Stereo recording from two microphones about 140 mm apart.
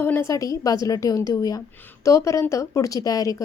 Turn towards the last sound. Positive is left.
turn(degrees=25)  # may be behind; listen again after turning